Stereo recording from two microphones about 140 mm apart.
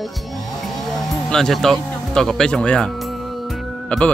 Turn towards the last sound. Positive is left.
turn(degrees=10)  # may be behind; listen again after turning